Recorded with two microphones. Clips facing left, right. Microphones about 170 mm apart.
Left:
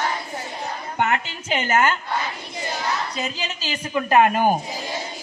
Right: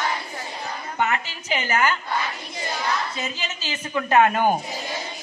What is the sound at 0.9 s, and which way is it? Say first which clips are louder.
A woman's voice: left 2 dB; 50° left (ahead or behind).